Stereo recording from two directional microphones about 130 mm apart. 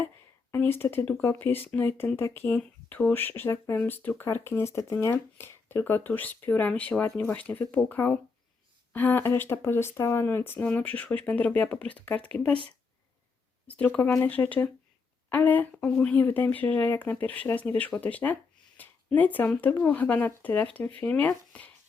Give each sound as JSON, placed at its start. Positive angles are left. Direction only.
{"t": 0.5, "sound": "speech", "side_deg": 15}
{"t": 13.7, "sound": "speech", "side_deg": 10}